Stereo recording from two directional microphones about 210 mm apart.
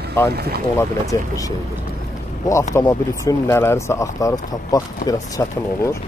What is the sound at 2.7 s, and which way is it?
Speech, 15° left (ahead or behind).